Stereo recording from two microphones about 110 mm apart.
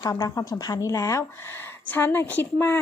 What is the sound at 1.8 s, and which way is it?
Speech, 20° left (ahead or behind).